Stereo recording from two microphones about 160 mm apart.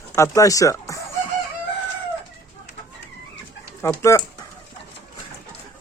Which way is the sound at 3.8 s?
20° left (ahead or behind).